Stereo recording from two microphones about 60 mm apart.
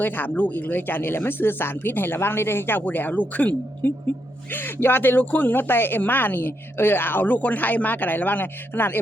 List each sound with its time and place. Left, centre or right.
0.0 s speech: left